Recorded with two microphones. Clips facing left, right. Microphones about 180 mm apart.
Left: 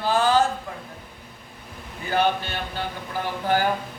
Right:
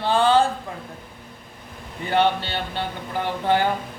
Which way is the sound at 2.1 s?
30° right (ahead or behind).